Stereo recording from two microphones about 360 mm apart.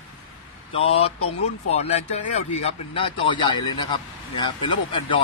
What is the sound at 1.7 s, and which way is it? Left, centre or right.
A man's voice, centre.